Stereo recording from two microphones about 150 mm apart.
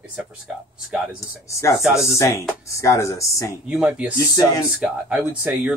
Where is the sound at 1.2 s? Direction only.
20° left (ahead or behind).